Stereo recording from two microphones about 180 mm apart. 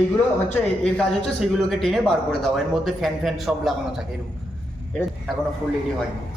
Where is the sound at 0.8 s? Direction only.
5° left (ahead or behind).